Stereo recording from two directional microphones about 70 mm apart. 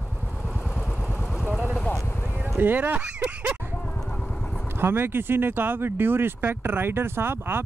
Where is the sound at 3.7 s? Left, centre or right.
Left.